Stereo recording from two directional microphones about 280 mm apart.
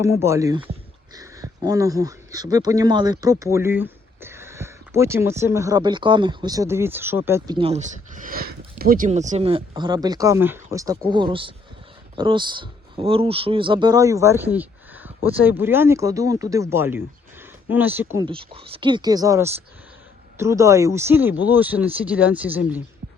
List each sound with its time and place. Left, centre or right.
0.2 s speech: centre
18.3 s speech: centre